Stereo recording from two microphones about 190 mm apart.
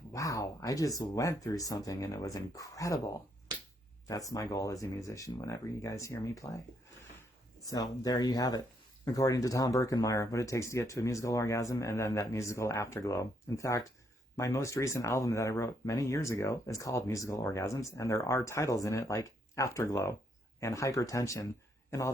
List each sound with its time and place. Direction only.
0.1 s speech: 15° left (ahead or behind)
4.0 s speech: 20° left (ahead or behind)
7.6 s speech: 20° left (ahead or behind)